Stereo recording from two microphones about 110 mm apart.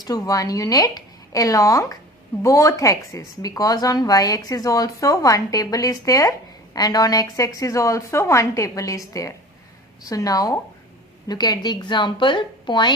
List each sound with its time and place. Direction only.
0.0 s a woman's voice: 35° left (ahead or behind)